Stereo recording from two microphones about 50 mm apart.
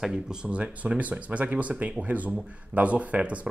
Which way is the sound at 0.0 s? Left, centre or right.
Centre.